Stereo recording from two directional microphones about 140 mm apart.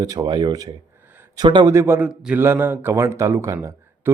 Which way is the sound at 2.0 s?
10° right (ahead or behind).